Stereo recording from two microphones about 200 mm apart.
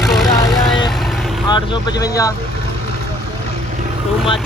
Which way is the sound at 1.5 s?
20° left (ahead or behind).